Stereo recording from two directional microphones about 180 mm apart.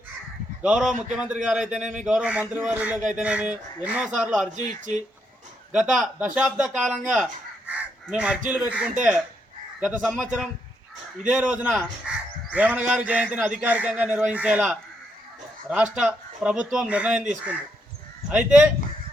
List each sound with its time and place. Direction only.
0.6 s speech: 5° right (ahead or behind)
4.5 s speech: 45° right (ahead or behind)
5.7 s speech: 5° right (ahead or behind)
7.7 s fowl: 5° right (ahead or behind)
8.4 s speech: 5° right (ahead or behind)
11.7 s crow: centre (ahead or behind)
12.5 s speech: 10° right (ahead or behind)
18.3 s speech: 5° right (ahead or behind)